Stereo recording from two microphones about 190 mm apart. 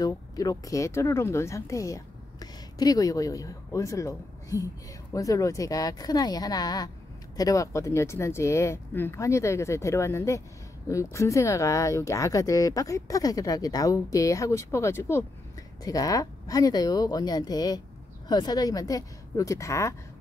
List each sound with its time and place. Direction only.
0.0 s speech: 20° left (ahead or behind)